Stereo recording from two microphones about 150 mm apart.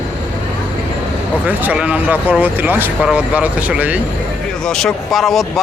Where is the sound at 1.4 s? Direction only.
10° right (ahead or behind).